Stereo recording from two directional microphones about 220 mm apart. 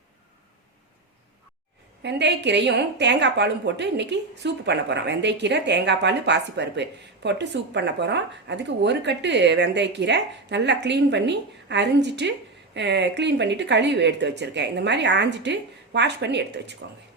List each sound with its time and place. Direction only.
2.0 s a woman's voice: 50° right (ahead or behind)